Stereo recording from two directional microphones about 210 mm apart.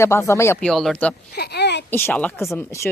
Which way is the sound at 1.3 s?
50° left (ahead or behind).